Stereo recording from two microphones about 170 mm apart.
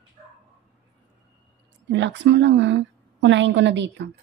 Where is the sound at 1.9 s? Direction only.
90° right.